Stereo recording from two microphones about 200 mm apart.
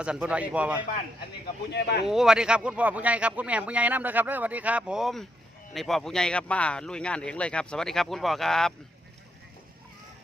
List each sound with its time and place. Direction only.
0.0 s speech: 5° right (ahead or behind)
1.7 s speech: 55° left (ahead or behind)
2.0 s speech: centre (ahead or behind)